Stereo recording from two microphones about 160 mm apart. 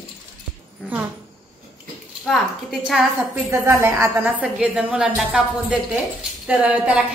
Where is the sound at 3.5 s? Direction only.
15° right (ahead or behind).